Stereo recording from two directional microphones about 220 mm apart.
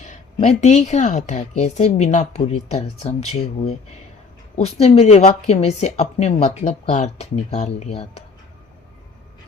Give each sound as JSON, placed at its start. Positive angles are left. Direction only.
{"t": 0.0, "sound": "a woman's voice", "side_deg": 30}